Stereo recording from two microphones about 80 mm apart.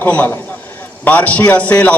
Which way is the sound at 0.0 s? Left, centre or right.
Left.